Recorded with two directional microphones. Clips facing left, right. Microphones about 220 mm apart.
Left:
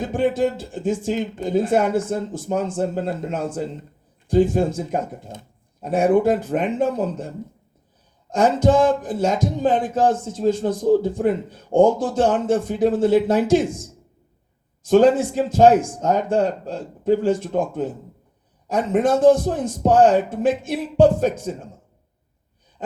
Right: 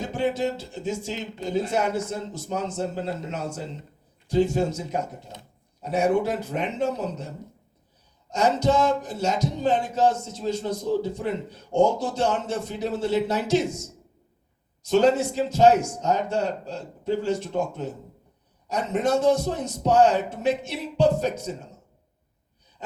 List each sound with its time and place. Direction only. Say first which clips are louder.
0.0 s speech: left 5 dB; 50° left (ahead or behind)
8.3 s speech: left 5 dB; 50° left (ahead or behind)
14.8 s speech: left 5 dB; 50° left (ahead or behind)